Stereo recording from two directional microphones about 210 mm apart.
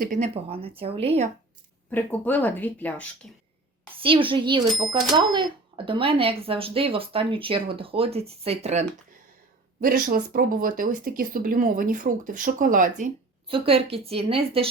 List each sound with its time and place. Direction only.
0.0 s speech: 35° right (ahead or behind)
1.9 s speech: 10° left (ahead or behind)
3.9 s speech: 25° right (ahead or behind)
9.8 s speech: 45° right (ahead or behind)
13.5 s speech: 25° right (ahead or behind)